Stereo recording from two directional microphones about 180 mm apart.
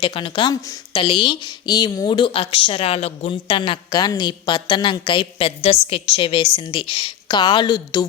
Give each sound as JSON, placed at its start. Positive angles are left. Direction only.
{"t": 0.0, "sound": "speech", "side_deg": 30}